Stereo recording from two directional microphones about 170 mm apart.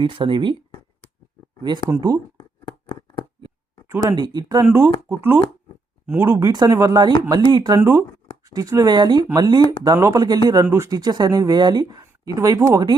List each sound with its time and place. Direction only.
0.0 s speech: 30° right (ahead or behind)
1.9 s speech: 20° right (ahead or behind)
2.4 s a sound: 30° left (ahead or behind)
3.8 s speech: 20° right (ahead or behind)
4.6 s speech: 10° right (ahead or behind)
7.8 s speech: 15° right (ahead or behind)